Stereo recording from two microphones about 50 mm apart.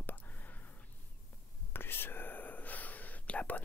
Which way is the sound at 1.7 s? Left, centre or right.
Left.